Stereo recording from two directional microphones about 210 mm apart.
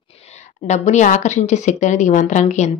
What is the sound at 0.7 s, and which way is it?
Speech, 35° left (ahead or behind).